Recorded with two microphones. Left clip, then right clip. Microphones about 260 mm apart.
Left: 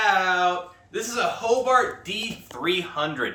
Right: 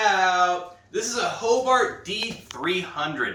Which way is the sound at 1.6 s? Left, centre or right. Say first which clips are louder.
Even; centre.